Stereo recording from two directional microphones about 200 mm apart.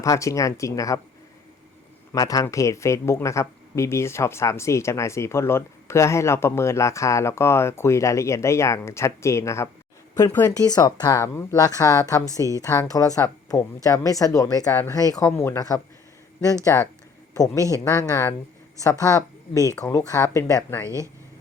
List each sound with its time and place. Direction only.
0.0 s speech: 15° left (ahead or behind)
2.1 s speech: 15° left (ahead or behind)
12.3 s a woman's voice: 15° right (ahead or behind)
12.6 s speech: 15° left (ahead or behind)
20.8 s a woman's voice: 15° right (ahead or behind)